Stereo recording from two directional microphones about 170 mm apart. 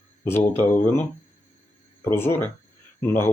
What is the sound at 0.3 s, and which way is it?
Speech, 15° left (ahead or behind).